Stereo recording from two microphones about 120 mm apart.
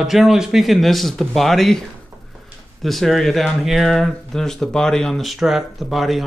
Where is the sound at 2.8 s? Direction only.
Centre (ahead or behind).